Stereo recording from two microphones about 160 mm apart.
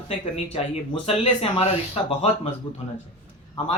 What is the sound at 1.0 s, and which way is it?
Speech, 40° left (ahead or behind).